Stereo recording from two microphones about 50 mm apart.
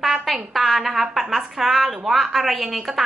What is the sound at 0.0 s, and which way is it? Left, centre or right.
A woman's voice, centre.